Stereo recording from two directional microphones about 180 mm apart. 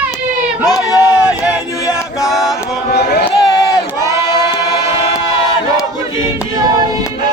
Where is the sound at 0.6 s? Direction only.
20° left (ahead or behind).